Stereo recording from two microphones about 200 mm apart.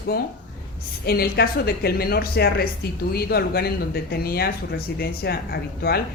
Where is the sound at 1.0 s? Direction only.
50° left (ahead or behind).